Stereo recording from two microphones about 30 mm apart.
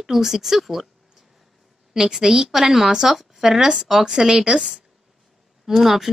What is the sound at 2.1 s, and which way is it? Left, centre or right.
A woman's voice, centre.